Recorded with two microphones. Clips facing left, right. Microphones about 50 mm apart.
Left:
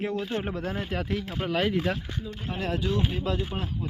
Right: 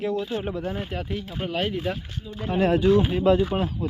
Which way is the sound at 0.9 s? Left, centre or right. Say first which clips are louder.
Left 1 dB; left.